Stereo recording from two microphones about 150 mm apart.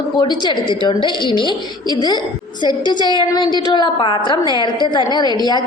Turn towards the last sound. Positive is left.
turn(degrees=25)  # may be behind; listen again after turning